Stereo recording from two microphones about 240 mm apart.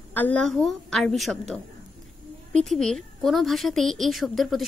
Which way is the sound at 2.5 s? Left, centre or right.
Centre.